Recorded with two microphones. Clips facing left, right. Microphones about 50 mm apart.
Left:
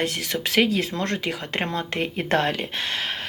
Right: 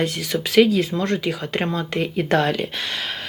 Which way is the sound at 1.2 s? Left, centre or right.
Left.